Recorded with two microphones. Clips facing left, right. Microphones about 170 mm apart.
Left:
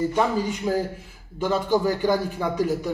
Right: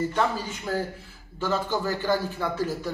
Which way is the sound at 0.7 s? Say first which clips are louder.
Left 4 dB; 15° left (ahead or behind).